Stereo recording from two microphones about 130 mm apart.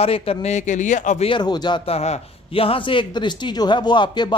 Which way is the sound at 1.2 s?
35° left (ahead or behind).